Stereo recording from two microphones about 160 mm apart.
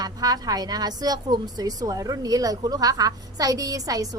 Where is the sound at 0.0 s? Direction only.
25° right (ahead or behind).